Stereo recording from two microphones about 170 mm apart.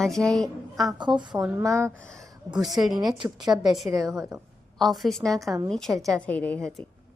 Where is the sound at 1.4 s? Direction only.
20° right (ahead or behind).